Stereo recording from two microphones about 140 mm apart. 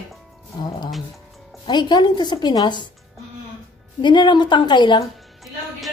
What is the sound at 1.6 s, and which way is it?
A woman's voice, 30° left (ahead or behind).